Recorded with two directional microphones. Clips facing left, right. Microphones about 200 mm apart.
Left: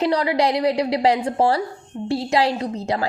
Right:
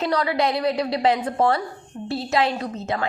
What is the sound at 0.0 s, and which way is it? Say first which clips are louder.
A woman's voice: left 3 dB; 30° left (ahead or behind).